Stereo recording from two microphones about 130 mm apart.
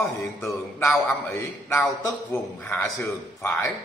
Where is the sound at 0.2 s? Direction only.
20° left (ahead or behind).